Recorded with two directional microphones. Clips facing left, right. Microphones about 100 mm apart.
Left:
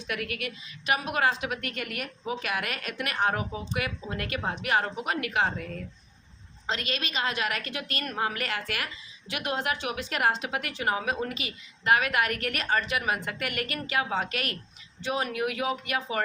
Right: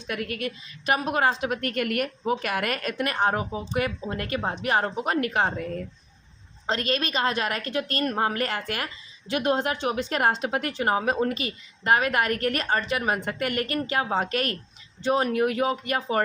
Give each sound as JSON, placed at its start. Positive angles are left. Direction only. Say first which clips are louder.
{"t": 0.1, "sound": "a woman's voice", "louder": "right 3 dB", "side_deg": -35}